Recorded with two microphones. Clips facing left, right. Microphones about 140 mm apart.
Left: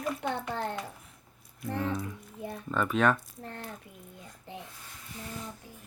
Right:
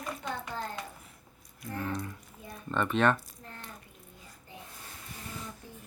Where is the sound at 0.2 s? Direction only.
70° left (ahead or behind).